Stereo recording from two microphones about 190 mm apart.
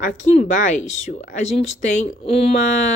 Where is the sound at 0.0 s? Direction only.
40° left (ahead or behind).